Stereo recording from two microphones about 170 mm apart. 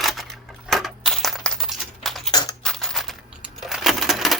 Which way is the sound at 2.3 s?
25° left (ahead or behind).